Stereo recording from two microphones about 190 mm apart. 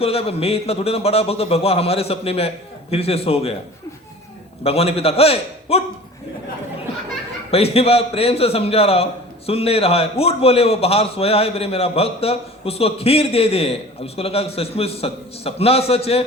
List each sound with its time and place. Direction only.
0.0 s a man's voice: 30° left (ahead or behind)
4.6 s a man's voice: 30° left (ahead or behind)
7.5 s a man's voice: 30° left (ahead or behind)